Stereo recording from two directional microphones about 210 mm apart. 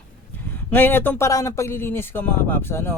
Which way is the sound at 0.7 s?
10° left (ahead or behind).